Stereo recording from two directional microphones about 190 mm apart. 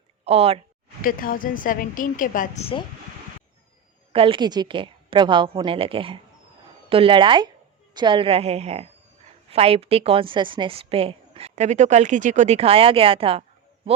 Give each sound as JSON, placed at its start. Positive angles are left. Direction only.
{"t": 0.3, "sound": "a woman's voice", "side_deg": -35}
{"t": 1.0, "sound": "a woman's voice", "side_deg": 50}
{"t": 4.1, "sound": "a woman's voice", "side_deg": -30}